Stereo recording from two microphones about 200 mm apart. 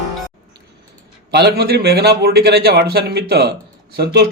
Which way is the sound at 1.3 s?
55° right (ahead or behind).